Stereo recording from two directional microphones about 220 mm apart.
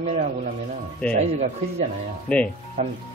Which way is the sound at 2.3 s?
5° left (ahead or behind).